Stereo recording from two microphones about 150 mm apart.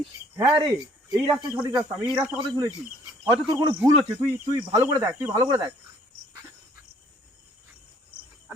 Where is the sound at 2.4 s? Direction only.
30° right (ahead or behind).